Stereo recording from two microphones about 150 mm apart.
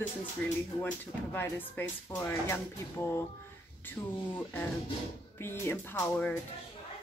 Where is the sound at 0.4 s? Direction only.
10° left (ahead or behind).